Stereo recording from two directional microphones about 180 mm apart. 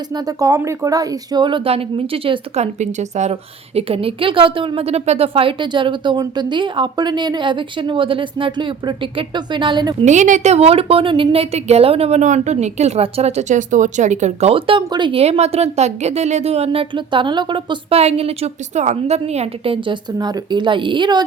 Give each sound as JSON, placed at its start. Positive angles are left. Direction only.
{"t": 0.1, "sound": "a woman's voice", "side_deg": -20}
{"t": 10.0, "sound": "a woman's voice", "side_deg": -40}